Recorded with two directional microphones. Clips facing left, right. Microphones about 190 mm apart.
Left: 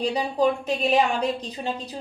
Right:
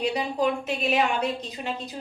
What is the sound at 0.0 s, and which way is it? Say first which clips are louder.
Speech: left 3 dB; 35° left (ahead or behind).